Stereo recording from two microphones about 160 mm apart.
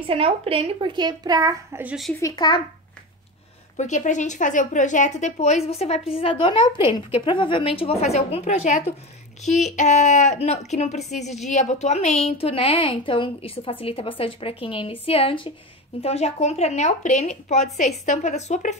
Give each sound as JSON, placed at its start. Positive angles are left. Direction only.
{"t": 0.0, "sound": "a woman's voice", "side_deg": -35}
{"t": 2.1, "sound": "a child's voice", "side_deg": 20}
{"t": 3.7, "sound": "a woman's voice", "side_deg": 50}